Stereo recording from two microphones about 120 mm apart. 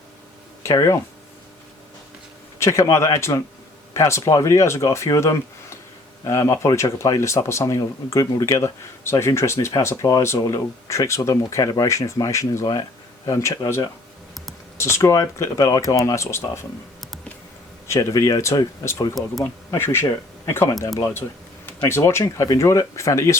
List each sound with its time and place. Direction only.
0.6 s speech: 25° left (ahead or behind)
2.6 s speech: 25° left (ahead or behind)
17.8 s speech: 25° left (ahead or behind)